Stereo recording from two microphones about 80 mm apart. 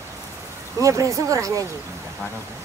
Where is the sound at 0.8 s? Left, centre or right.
Right.